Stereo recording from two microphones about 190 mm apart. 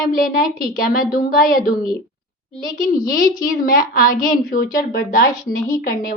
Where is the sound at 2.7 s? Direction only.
45° left (ahead or behind).